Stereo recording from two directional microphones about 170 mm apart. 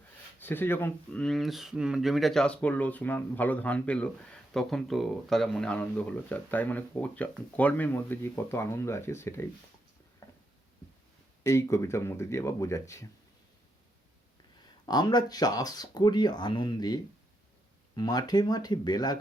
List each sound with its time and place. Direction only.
0.3 s speech: 10° left (ahead or behind)
10.2 s a sound: 20° left (ahead or behind)
11.4 s speech: 15° left (ahead or behind)
14.8 s speech: 25° left (ahead or behind)